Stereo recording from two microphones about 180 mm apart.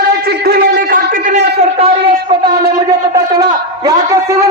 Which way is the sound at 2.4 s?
20° right (ahead or behind).